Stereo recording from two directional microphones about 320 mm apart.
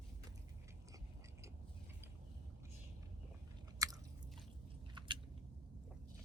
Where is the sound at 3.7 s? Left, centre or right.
Centre.